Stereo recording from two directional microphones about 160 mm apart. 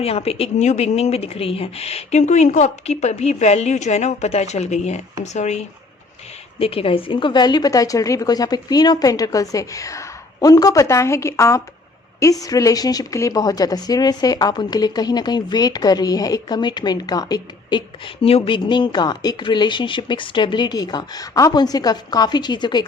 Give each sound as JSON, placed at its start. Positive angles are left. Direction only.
{"t": 0.0, "sound": "a woman's voice", "side_deg": 40}